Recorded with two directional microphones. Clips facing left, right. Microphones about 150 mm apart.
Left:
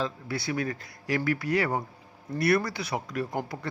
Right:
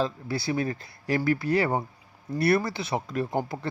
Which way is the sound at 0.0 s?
30° right (ahead or behind).